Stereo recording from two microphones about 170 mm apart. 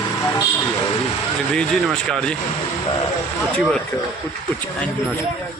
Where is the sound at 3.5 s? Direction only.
5° left (ahead or behind).